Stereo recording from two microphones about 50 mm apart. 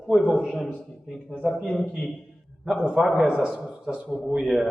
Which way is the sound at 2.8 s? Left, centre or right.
Centre.